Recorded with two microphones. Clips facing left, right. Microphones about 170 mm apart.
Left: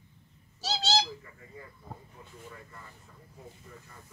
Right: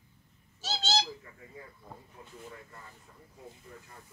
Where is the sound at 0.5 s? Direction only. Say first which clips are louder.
Left 3 dB; 35° left (ahead or behind).